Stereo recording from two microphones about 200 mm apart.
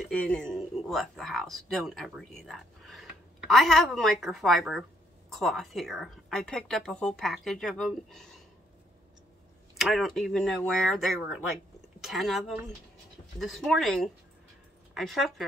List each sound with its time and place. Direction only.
0.0 s speech: 5° left (ahead or behind)
9.8 s speech: centre (ahead or behind)